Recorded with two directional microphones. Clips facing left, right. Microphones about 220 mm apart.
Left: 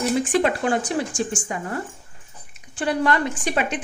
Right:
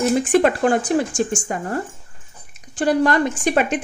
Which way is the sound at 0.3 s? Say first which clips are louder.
Right 7 dB; 50° right (ahead or behind).